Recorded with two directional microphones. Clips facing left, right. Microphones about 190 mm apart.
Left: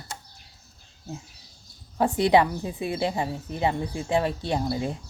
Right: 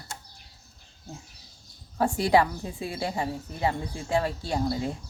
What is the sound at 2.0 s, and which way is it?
A woman's voice, 20° left (ahead or behind).